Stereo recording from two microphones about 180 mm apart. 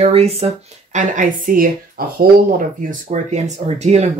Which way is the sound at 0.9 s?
45° right (ahead or behind).